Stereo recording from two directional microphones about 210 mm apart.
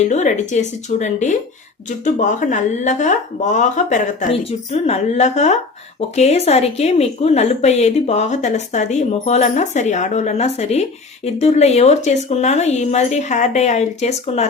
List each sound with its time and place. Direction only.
0.0 s a woman's voice: 35° left (ahead or behind)